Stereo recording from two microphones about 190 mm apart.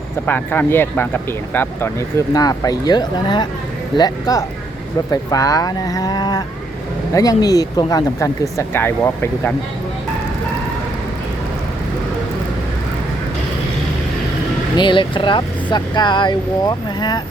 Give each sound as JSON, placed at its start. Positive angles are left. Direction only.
{"t": 0.3, "sound": "speech", "side_deg": 10}
{"t": 14.8, "sound": "speech", "side_deg": 25}